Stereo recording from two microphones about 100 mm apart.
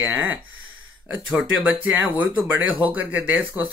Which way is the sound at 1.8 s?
15° right (ahead or behind).